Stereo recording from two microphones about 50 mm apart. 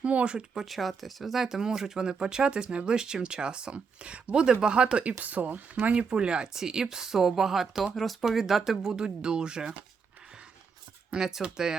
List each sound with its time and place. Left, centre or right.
0.0 s speech: right
0.3 s speech: centre
0.7 s speech: centre; by 4.9 s right
5.2 s speech: right; by 9.7 s centre
11.1 s speech: centre